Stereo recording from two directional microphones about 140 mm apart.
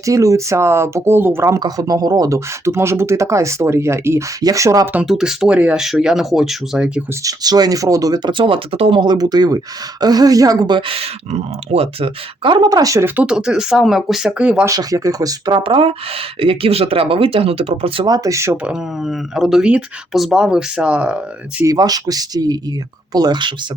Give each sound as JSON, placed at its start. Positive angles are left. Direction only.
{"t": 0.0, "sound": "speech", "side_deg": -25}
{"t": 1.5, "sound": "speech", "side_deg": -25}
{"t": 5.0, "sound": "speech", "side_deg": -5}
{"t": 7.3, "sound": "speech", "side_deg": -30}
{"t": 13.1, "sound": "speech", "side_deg": -5}
{"t": 14.6, "sound": "speech", "side_deg": -25}
{"t": 18.1, "sound": "speech", "side_deg": -25}
{"t": 18.5, "sound": "speech", "side_deg": -5}
{"t": 21.6, "sound": "speech", "side_deg": -25}